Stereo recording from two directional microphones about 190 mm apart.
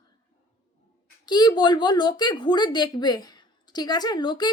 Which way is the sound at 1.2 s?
20° left (ahead or behind).